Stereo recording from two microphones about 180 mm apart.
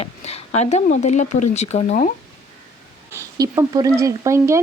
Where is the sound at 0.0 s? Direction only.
35° left (ahead or behind).